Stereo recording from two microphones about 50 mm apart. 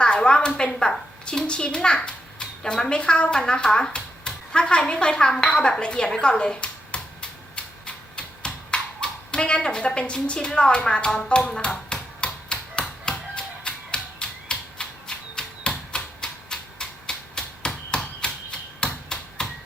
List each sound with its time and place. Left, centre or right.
0.0 s a woman's voice: centre
11.3 s a sound: left
18.8 s typewriter: centre